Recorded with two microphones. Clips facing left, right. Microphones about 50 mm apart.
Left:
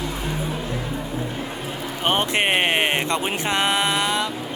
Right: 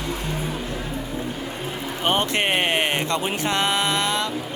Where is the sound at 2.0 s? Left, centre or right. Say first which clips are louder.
Left 1 dB; centre.